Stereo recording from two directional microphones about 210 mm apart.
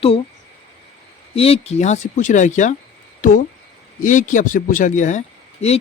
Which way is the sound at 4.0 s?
40° left (ahead or behind).